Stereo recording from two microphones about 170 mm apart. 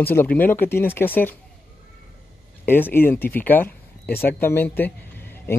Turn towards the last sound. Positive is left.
turn(degrees=10)  # may be behind; listen again after turning